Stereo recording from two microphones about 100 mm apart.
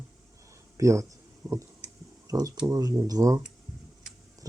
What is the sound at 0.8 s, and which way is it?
Speech, 30° right (ahead or behind).